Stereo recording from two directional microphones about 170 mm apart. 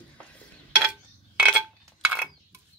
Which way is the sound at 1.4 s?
10° right (ahead or behind).